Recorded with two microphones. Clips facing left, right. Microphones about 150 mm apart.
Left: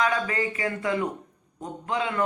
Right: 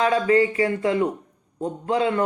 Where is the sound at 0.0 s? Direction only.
30° right (ahead or behind).